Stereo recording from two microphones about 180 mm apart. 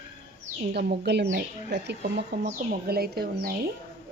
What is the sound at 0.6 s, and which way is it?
Speech, 65° right (ahead or behind).